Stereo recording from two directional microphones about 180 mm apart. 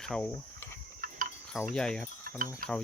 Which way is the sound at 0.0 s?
5° left (ahead or behind).